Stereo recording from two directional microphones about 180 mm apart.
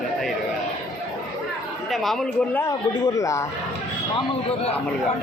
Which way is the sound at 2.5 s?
15° left (ahead or behind).